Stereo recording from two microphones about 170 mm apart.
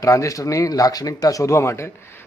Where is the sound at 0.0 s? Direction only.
20° left (ahead or behind).